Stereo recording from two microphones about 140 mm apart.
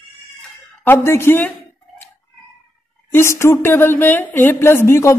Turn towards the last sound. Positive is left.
turn(degrees=20)  # may be behind; listen again after turning